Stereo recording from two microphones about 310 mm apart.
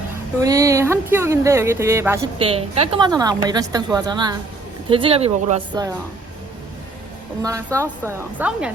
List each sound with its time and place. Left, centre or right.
0.4 s speech: centre
7.4 s speech: centre